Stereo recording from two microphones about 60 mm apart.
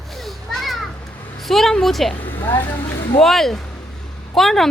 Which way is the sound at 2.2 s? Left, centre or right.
Left.